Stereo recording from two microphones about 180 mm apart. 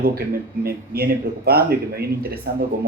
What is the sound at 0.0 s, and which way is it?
Speech, 55° right (ahead or behind).